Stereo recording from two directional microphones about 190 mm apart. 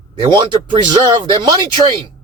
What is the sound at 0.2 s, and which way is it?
Speech, 25° right (ahead or behind).